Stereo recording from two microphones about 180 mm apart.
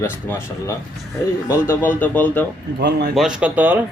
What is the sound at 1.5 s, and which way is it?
Speech, 10° left (ahead or behind).